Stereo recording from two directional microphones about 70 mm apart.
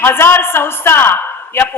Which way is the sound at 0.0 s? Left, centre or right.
Left.